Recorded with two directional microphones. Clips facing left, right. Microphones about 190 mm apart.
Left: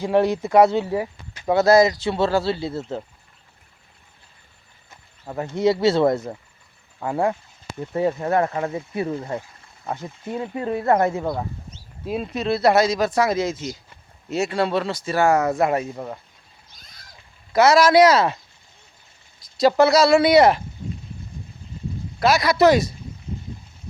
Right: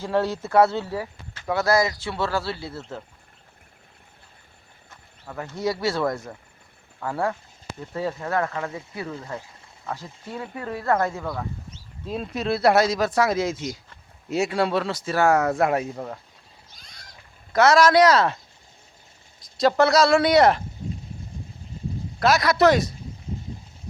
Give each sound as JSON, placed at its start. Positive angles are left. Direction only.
{"t": 0.0, "sound": "speech", "side_deg": 15}
{"t": 5.2, "sound": "speech", "side_deg": 25}
{"t": 12.0, "sound": "speech", "side_deg": 5}
{"t": 17.5, "sound": "speech", "side_deg": 5}
{"t": 19.5, "sound": "speech", "side_deg": 5}
{"t": 22.2, "sound": "speech", "side_deg": 0}